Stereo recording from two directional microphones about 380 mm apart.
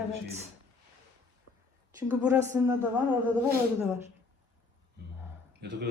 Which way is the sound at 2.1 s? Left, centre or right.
Centre.